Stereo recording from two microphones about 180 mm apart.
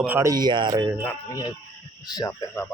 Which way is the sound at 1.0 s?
20° left (ahead or behind).